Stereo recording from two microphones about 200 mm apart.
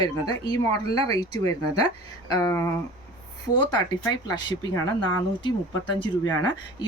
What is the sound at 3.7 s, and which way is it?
Speech, 20° left (ahead or behind).